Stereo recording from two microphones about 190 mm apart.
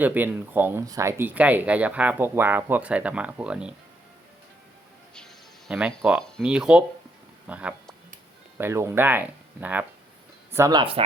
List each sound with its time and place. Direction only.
0.0 s speech: 10° right (ahead or behind)
5.1 s music: 5° left (ahead or behind)
6.0 s speech: 15° right (ahead or behind)
7.4 s a sound: 5° right (ahead or behind)
8.5 s speech: 15° right (ahead or behind)